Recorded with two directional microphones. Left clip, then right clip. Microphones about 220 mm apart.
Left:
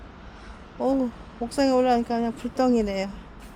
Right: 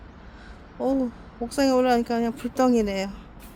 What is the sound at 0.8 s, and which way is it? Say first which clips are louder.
Speech: left 1 dB; centre (ahead or behind).